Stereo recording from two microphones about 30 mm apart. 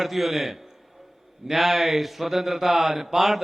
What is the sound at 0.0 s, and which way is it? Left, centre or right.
A man's voice, centre.